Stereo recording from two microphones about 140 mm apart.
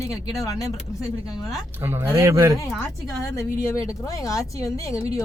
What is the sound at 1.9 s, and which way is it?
Speech, 15° right (ahead or behind).